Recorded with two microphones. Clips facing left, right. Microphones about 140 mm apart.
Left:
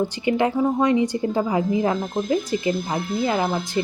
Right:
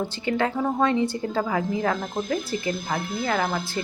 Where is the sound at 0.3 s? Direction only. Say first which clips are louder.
Left 4 dB; 15° left (ahead or behind).